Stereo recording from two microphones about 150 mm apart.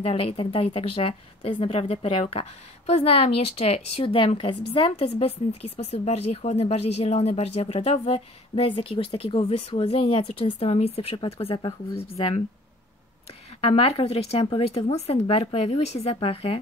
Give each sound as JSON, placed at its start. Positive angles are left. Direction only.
{"t": 0.0, "sound": "speech", "side_deg": 40}
{"t": 13.6, "sound": "speech", "side_deg": 40}